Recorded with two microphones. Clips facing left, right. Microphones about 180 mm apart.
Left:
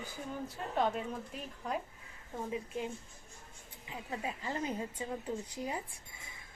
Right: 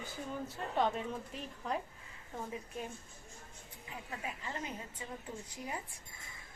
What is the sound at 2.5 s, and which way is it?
Speech, 20° left (ahead or behind).